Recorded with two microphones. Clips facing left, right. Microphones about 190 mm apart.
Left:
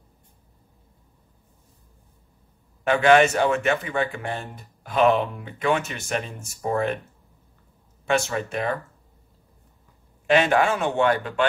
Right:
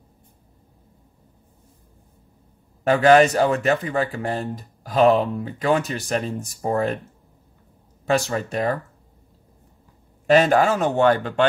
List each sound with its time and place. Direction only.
2.8 s speech: 40° right (ahead or behind)
8.1 s speech: 35° right (ahead or behind)
10.2 s speech: 40° right (ahead or behind)